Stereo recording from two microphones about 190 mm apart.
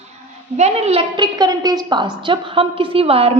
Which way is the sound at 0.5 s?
35° right (ahead or behind).